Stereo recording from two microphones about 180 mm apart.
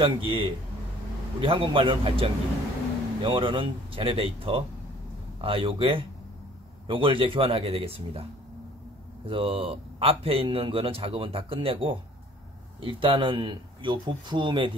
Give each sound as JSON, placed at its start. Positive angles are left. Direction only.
{"t": 0.0, "sound": "speech", "side_deg": -30}
{"t": 9.3, "sound": "speech", "side_deg": -30}